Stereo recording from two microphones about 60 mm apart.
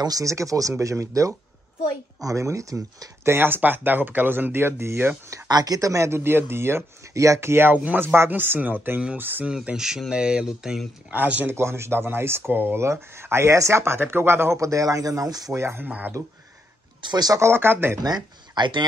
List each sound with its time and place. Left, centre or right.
0.1 s speech: right
3.3 s speech: right
5.3 s speech: right
6.1 s speech: right
7.2 s speech: right
7.7 s speech: right
9.5 s speech: centre
11.1 s speech: right
11.4 s speech: right
12.8 s speech: right
14.6 s speech: right
15.5 s speech: right
15.8 s speech: right
17.4 s speech: right